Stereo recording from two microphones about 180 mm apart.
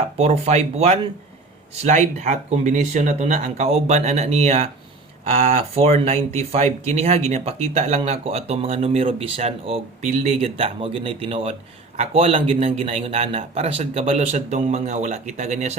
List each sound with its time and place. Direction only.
0.2 s speech: 35° right (ahead or behind)